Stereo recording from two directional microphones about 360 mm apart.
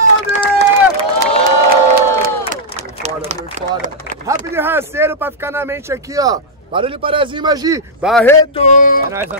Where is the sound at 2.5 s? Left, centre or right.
Centre; by 9.0 s left.